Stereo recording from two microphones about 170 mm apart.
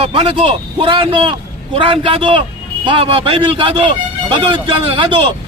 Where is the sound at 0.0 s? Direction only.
35° right (ahead or behind).